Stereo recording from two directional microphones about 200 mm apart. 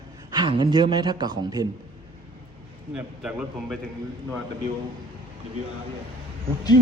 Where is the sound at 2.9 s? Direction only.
5° right (ahead or behind).